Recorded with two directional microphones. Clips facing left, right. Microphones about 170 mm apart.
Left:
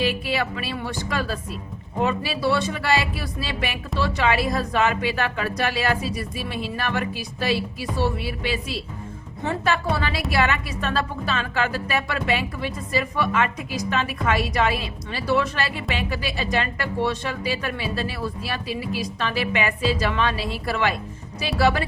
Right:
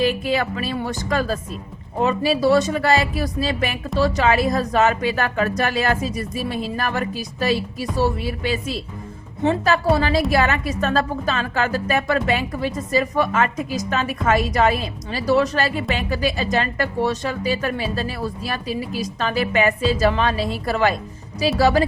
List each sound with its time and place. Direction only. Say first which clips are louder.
0.0 s a woman's voice: right 4 dB; 45° right (ahead or behind)